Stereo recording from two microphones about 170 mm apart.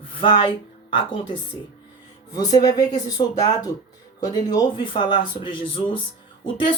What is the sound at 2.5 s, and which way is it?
Speech, 20° left (ahead or behind).